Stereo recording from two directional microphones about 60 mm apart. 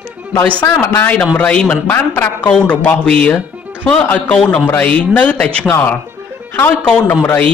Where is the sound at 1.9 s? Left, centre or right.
Left.